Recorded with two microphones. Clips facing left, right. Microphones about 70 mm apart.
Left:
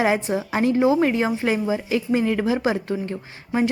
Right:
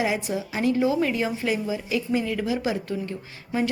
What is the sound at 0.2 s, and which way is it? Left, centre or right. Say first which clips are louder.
A woman's voice: left 5 dB; left.